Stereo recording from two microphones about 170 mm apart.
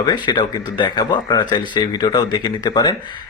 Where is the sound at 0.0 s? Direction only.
25° left (ahead or behind).